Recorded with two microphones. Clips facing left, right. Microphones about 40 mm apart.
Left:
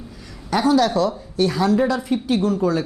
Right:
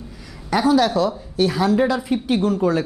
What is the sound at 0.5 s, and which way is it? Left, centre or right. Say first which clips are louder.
Speech: even; centre.